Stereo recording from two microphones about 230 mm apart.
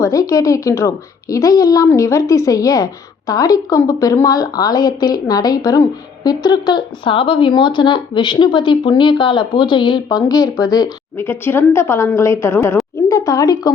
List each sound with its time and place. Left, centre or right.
0.0 s a woman's voice: centre